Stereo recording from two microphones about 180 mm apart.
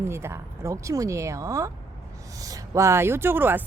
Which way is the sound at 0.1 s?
15° right (ahead or behind).